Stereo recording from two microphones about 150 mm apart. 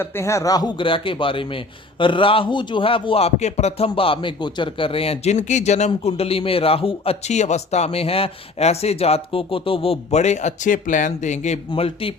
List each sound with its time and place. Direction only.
0.0 s a man's voice: 20° left (ahead or behind); by 11.6 s 50° left (ahead or behind)
11.7 s a man's voice: 35° left (ahead or behind)